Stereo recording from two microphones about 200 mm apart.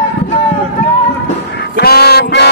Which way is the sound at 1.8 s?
50° left (ahead or behind).